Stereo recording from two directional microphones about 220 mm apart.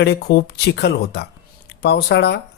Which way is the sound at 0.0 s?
50° left (ahead or behind).